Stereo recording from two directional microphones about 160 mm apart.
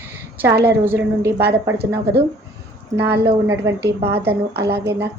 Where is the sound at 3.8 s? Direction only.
90° right.